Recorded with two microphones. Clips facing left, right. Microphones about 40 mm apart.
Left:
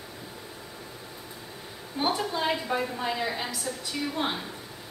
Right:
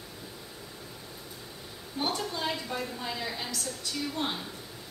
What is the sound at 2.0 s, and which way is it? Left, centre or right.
A woman's voice, centre.